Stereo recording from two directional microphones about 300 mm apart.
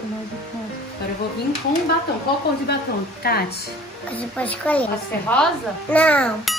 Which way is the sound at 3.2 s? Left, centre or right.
Left.